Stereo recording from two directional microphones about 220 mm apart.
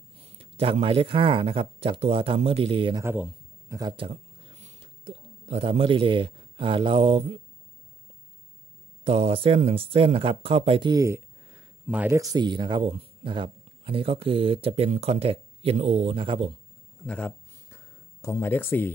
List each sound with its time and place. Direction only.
0.4 s speech: 25° right (ahead or behind)
3.1 s speech: 5° right (ahead or behind); by 7.3 s 25° right (ahead or behind)
9.0 s speech: 25° right (ahead or behind)
17.0 s a sound: 5° left (ahead or behind)